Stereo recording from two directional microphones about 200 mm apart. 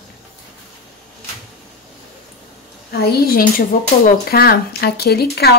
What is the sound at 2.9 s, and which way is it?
Speech, 50° left (ahead or behind).